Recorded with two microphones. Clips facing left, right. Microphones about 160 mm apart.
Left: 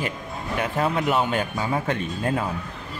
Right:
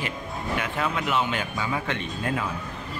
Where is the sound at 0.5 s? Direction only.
40° left (ahead or behind).